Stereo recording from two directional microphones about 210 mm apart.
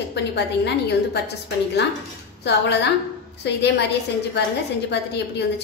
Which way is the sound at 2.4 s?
55° left (ahead or behind).